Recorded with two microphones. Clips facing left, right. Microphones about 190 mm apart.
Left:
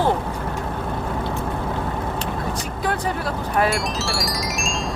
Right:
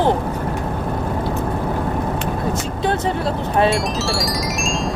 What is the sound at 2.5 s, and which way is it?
Vehicle, 25° right (ahead or behind).